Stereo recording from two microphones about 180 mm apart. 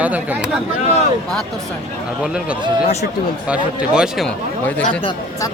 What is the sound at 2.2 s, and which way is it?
Speech, 5° right (ahead or behind).